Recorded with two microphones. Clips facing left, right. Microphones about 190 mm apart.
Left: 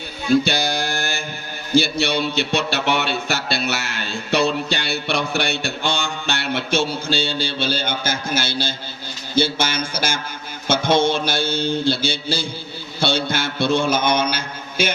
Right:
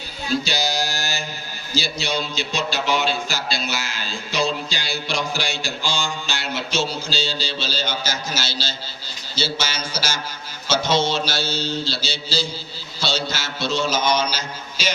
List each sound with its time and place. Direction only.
0.4 s mantra: 55° left (ahead or behind)
1.7 s a man's voice: 60° left (ahead or behind)